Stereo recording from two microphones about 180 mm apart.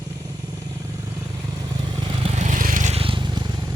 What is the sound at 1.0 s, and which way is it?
Vehicle, 20° right (ahead or behind).